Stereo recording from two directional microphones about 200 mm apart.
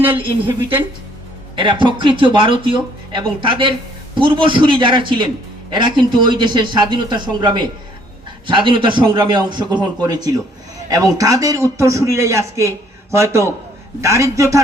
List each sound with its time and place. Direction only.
0.2 s a man's voice: 25° right (ahead or behind)